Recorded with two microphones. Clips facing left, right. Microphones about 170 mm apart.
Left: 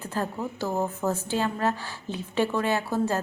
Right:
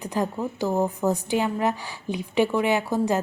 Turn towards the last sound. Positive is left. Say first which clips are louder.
# right 3 dB
turn(degrees=-15)  # may be behind; listen again after turning